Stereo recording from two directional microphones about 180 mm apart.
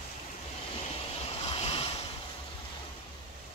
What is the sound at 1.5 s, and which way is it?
Waves, 35° left (ahead or behind).